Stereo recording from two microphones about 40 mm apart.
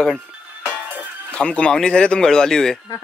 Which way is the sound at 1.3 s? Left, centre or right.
Left.